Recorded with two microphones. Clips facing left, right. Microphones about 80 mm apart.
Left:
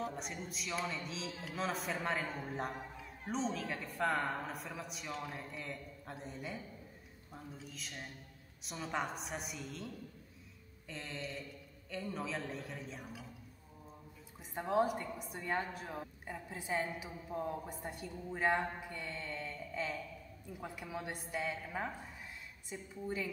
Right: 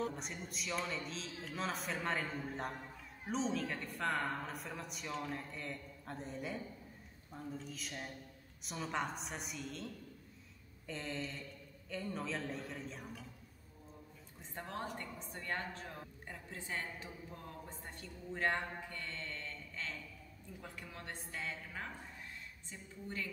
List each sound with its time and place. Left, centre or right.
0.0 s a man's voice: centre
10.9 s a man's voice: centre
14.5 s a woman's voice: centre